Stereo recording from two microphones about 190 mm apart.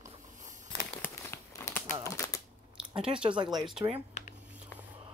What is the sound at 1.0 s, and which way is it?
Crumpling, 10° left (ahead or behind).